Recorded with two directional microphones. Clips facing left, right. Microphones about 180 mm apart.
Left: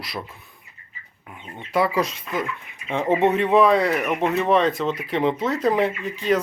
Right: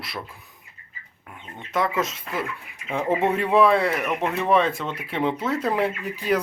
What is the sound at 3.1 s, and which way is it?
Speech, 25° left (ahead or behind).